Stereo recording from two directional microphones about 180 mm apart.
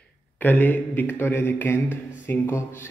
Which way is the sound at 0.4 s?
10° left (ahead or behind).